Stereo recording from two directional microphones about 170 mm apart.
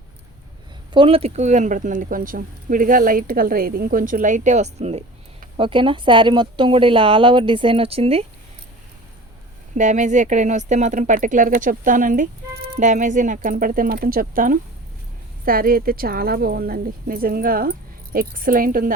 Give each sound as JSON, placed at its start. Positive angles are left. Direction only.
{"t": 0.9, "sound": "a woman's voice", "side_deg": -35}
{"t": 9.7, "sound": "a woman's voice", "side_deg": -45}